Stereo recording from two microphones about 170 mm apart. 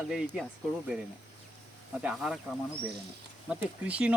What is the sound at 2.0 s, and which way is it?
Speech, 5° right (ahead or behind).